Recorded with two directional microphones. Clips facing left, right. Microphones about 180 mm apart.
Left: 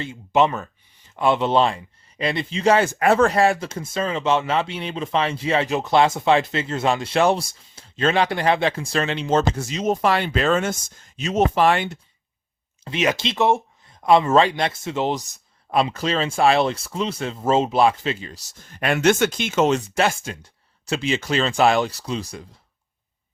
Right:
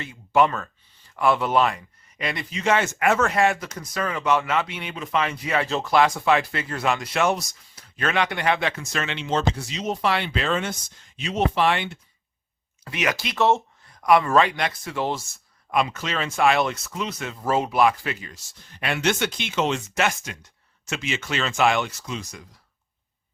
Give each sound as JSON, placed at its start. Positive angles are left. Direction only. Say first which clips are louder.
{"t": 0.0, "sound": "speech", "louder": "left 1 dB", "side_deg": 25}
{"t": 12.8, "sound": "speech", "louder": "left 5 dB", "side_deg": 25}
{"t": 15.7, "sound": "speech", "louder": "left 4 dB", "side_deg": 30}
{"t": 19.9, "sound": "speech", "louder": "left 4 dB", "side_deg": 30}